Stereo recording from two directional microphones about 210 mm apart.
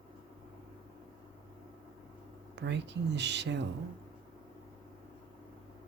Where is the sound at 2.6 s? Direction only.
55° right (ahead or behind).